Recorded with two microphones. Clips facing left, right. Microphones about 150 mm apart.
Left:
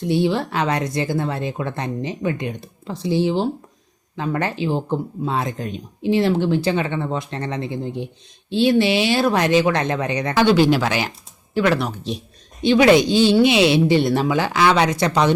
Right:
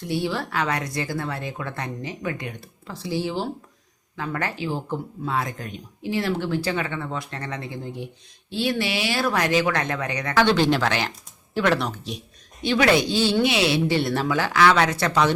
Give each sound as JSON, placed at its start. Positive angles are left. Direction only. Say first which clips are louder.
{"t": 0.0, "sound": "speech", "louder": "left 7 dB", "side_deg": 20}
{"t": 10.4, "sound": "speech", "louder": "left 5 dB", "side_deg": 10}
{"t": 12.6, "sound": "speech", "louder": "left 6 dB", "side_deg": 20}